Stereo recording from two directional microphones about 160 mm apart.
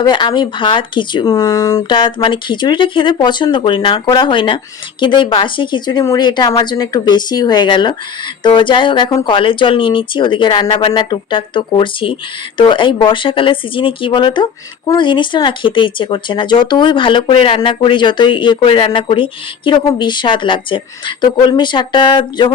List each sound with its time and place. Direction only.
0.0 s speech: 30° left (ahead or behind)